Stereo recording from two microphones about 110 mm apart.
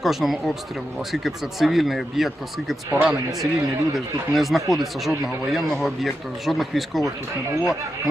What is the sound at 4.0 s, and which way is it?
Speech, centre (ahead or behind).